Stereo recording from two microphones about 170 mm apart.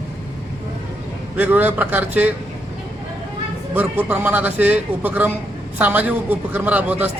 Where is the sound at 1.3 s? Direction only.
10° right (ahead or behind).